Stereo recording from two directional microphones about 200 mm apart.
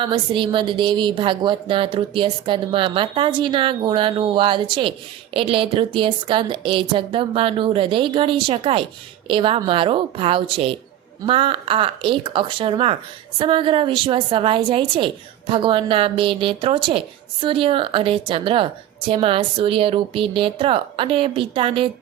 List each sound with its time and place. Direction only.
0.0 s a woman's voice: 25° right (ahead or behind)